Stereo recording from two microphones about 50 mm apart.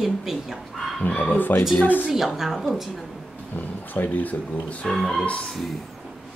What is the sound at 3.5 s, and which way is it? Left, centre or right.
Speech, left.